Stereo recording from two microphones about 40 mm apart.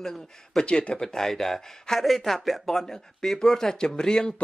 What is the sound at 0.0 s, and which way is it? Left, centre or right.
Speech, centre.